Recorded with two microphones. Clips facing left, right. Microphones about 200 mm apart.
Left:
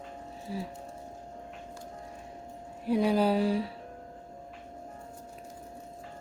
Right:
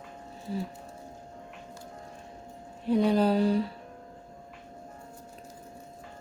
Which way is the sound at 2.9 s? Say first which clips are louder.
Right 2 dB; 5° left (ahead or behind).